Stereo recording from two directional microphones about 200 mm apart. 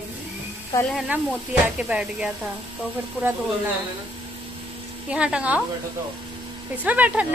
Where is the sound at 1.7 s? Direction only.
5° right (ahead or behind).